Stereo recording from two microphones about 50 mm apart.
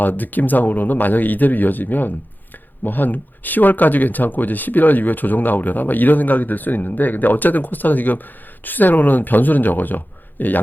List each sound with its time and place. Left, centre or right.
0.0 s speech: left